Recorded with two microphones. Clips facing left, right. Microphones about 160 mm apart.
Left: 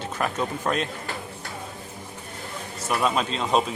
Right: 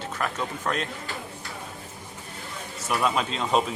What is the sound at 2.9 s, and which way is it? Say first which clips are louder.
Speech: left 1 dB; centre (ahead or behind).